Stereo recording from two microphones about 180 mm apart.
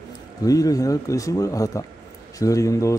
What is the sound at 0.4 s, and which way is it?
A man's voice, 20° left (ahead or behind).